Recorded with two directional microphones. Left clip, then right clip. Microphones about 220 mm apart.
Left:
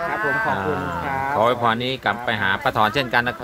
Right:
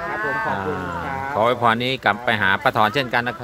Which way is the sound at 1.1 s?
50° left (ahead or behind).